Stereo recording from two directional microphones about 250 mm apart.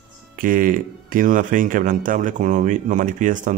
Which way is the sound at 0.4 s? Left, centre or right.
Right.